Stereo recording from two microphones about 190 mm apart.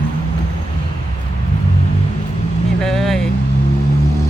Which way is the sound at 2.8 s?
Centre (ahead or behind).